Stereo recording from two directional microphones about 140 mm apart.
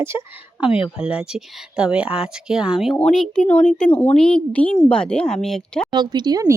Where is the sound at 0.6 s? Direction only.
5° right (ahead or behind).